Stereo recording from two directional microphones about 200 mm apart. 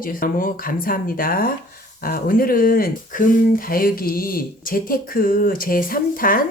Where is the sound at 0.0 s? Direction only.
45° left (ahead or behind).